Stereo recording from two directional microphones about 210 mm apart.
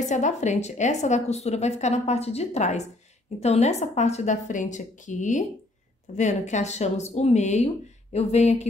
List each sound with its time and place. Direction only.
0.0 s a woman's voice: 35° left (ahead or behind)